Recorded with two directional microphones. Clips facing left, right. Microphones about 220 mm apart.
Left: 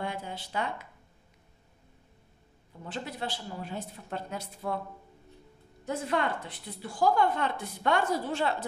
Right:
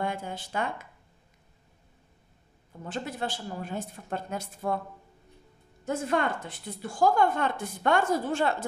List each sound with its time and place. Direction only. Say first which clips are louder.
0.0 s a woman's voice: right 3 dB; 50° right (ahead or behind)
2.8 s a woman's voice: right 3 dB; 45° right (ahead or behind)
5.9 s a woman's voice: right 2 dB; 45° right (ahead or behind)